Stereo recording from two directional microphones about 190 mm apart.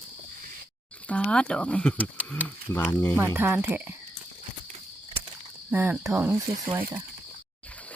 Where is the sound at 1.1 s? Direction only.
5° left (ahead or behind).